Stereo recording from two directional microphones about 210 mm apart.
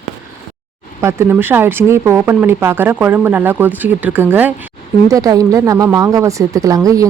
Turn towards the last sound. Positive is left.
turn(degrees=-15)  # may be behind; listen again after turning